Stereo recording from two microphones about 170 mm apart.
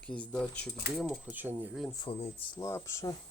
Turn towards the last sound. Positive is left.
turn(degrees=15)  # may be behind; listen again after turning